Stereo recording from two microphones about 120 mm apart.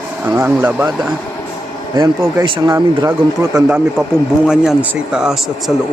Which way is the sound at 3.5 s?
15° right (ahead or behind).